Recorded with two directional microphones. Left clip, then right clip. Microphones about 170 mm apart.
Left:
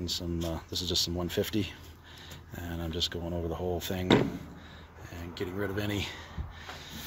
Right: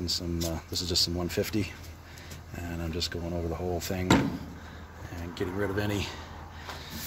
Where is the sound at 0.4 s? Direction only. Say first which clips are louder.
Right 2 dB; 15° left (ahead or behind).